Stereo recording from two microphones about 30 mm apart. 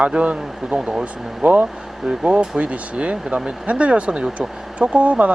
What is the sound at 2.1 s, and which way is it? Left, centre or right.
Speech, right.